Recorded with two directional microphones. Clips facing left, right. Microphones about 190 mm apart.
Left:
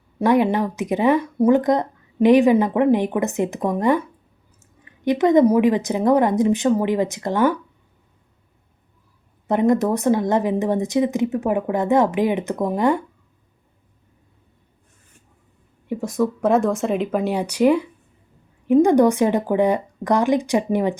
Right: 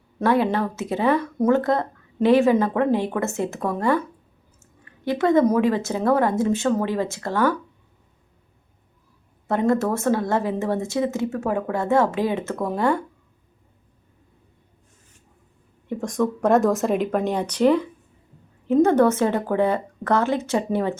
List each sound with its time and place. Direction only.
0.2 s speech: 15° left (ahead or behind)
9.5 s speech: 15° left (ahead or behind)
15.9 s speech: 5° left (ahead or behind)